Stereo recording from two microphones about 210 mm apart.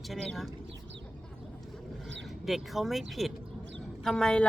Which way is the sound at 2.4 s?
Centre (ahead or behind).